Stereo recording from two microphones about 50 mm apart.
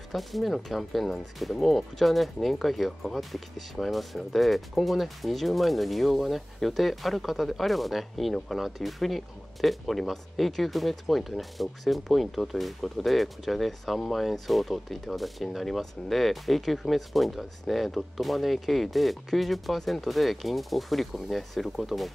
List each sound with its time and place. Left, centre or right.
0.1 s speech: centre